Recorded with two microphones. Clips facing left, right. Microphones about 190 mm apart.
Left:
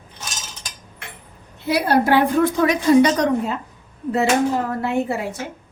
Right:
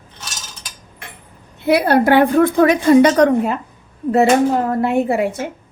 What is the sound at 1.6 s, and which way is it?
A woman's voice, 60° right (ahead or behind).